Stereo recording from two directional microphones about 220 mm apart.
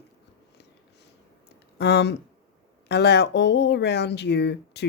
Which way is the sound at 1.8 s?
50° left (ahead or behind).